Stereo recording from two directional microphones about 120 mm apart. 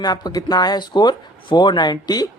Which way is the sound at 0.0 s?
35° left (ahead or behind).